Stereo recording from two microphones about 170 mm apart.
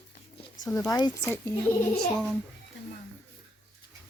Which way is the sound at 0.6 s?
20° left (ahead or behind).